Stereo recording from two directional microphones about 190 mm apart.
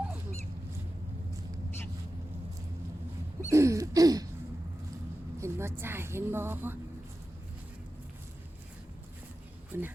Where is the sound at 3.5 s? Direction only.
15° right (ahead or behind).